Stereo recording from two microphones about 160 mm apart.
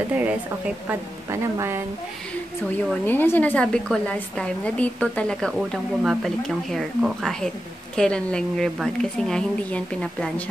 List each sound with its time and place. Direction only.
0.1 s a woman's voice: 10° right (ahead or behind)
2.9 s a woman's voice: 10° left (ahead or behind)